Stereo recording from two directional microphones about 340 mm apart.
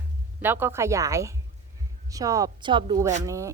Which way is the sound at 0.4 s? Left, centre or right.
Centre.